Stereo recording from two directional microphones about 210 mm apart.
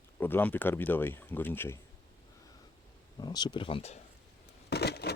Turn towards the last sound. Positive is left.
turn(degrees=50)  # may be behind; listen again after turning